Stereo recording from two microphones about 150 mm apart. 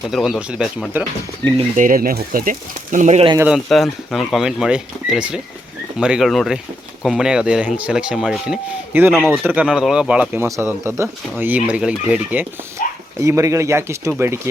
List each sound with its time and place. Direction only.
0.1 s speech: centre (ahead or behind)
1.7 s speech: 60° right (ahead or behind)
3.5 s speech: centre (ahead or behind)
12.8 s dog: 65° left (ahead or behind)
13.1 s speech: 20° right (ahead or behind)